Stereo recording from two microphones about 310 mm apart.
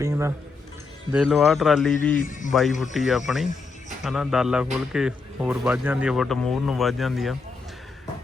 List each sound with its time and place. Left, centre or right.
0.0 s a man's voice: centre
2.2 s a man's voice: left
2.5 s a man's voice: centre